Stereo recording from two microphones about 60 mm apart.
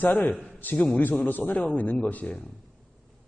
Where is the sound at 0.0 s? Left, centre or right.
Left.